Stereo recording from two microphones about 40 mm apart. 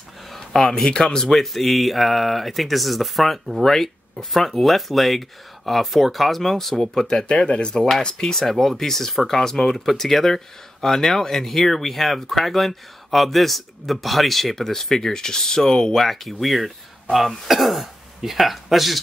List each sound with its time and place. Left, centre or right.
0.3 s a sound: centre
0.8 s speech: centre
1.4 s speech: centre
7.4 s speech: left; by 18.9 s centre